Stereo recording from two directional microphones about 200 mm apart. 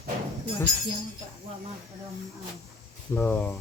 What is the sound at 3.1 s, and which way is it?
Speech, 10° left (ahead or behind).